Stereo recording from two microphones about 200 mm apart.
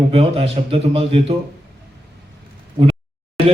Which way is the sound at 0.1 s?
30° right (ahead or behind).